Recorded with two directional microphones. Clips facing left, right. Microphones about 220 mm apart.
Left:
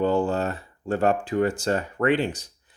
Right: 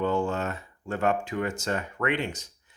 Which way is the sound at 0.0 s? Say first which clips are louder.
Left 4 dB; 35° left (ahead or behind).